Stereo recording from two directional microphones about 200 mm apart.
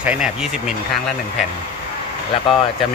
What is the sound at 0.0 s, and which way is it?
Speech, 5° right (ahead or behind).